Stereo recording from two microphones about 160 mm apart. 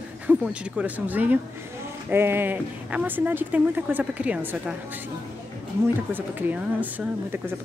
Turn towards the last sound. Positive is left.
turn(degrees=-10)  # may be behind; listen again after turning